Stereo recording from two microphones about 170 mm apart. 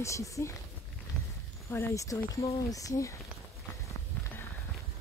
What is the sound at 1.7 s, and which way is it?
Speech, 15° left (ahead or behind).